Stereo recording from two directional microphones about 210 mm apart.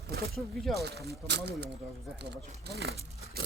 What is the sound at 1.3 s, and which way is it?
Speech, 55° right (ahead or behind).